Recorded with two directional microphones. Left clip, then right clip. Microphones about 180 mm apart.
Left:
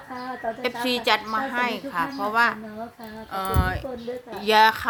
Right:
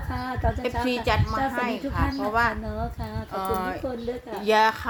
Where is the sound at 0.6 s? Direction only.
15° left (ahead or behind).